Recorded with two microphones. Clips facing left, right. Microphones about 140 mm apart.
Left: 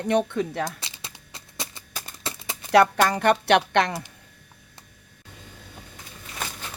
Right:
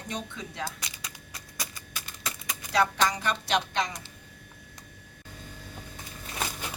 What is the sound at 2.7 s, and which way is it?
A woman's voice, 65° left (ahead or behind).